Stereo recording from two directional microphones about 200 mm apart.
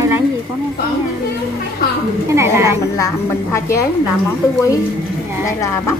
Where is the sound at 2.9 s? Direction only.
15° left (ahead or behind).